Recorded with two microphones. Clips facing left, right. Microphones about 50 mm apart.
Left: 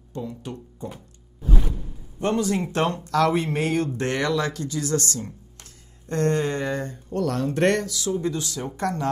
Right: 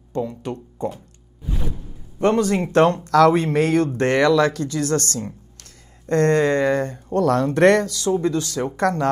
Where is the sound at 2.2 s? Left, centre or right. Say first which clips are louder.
Right 5 dB; right.